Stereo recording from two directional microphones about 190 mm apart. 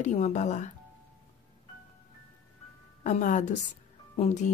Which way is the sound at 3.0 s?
40° left (ahead or behind).